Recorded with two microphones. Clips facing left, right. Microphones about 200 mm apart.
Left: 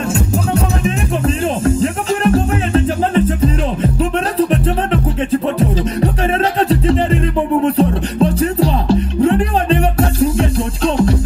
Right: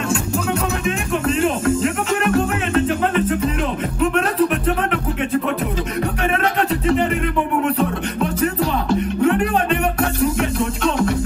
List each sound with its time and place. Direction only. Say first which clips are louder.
0.5 s music: left 3 dB; 35° left (ahead or behind)
6.7 s music: left 4 dB; 30° left (ahead or behind)